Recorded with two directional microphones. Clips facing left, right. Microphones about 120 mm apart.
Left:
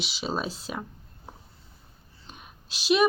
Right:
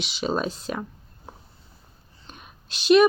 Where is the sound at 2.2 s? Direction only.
5° left (ahead or behind).